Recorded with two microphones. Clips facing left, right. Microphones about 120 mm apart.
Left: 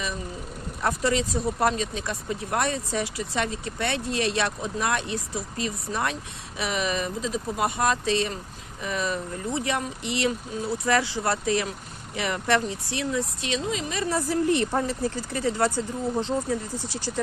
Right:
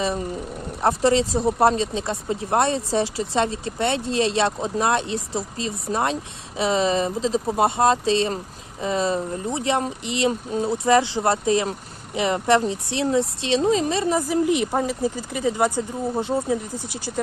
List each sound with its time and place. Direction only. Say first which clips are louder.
0.8 s speech: right 6 dB; 30° right (ahead or behind)
13.6 s a woman's voice: right 12 dB; 40° right (ahead or behind)
14.0 s speech: right 4 dB; 15° right (ahead or behind)